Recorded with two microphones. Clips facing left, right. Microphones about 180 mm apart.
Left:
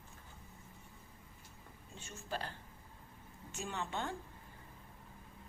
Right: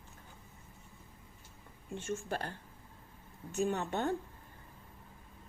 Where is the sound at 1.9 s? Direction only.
55° right (ahead or behind).